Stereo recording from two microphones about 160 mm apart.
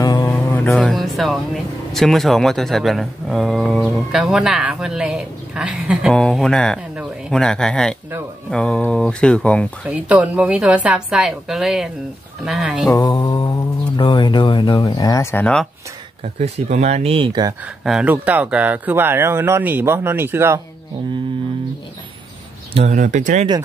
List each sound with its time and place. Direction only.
0.0 s mantra: 25° left (ahead or behind)
0.3 s speech: 10° left (ahead or behind)
9.8 s speech: 10° right (ahead or behind)
12.9 s speech: 25° left (ahead or behind)
15.4 s speech: 5° left (ahead or behind)
16.3 s speech: 45° right (ahead or behind); by 17.6 s 30° right (ahead or behind)
17.8 s speech: 5° right (ahead or behind)
22.8 s speech: 45° right (ahead or behind)